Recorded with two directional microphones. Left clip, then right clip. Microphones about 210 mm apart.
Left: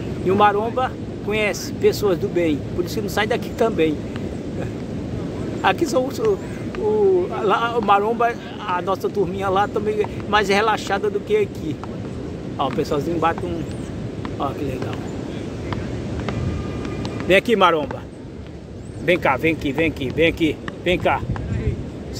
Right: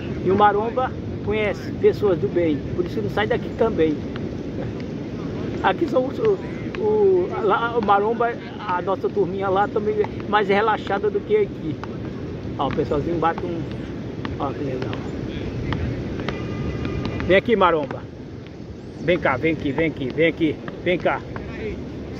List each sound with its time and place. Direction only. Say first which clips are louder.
0.3 s speech: left 1 dB; 25° left (ahead or behind)
5.6 s speech: left 1 dB; 30° left (ahead or behind)
7.3 s speech: left 1 dB; 25° left (ahead or behind)
12.5 s speech: left 1 dB; 25° left (ahead or behind)
17.3 s speech: left 1 dB; 30° left (ahead or behind)
19.0 s speech: left 2 dB; 25° left (ahead or behind)